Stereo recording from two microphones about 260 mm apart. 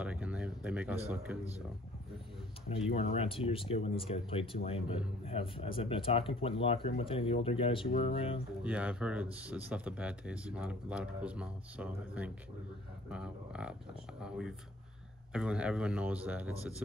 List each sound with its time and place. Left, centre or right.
0.0 s a sound: centre
3.0 s speech: left
8.6 s speech: centre
15.3 s speech: centre